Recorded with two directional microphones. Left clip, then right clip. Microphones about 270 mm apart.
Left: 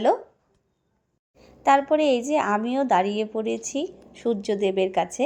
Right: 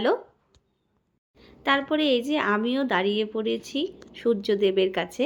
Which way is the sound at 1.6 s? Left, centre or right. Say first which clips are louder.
Left 4 dB; centre.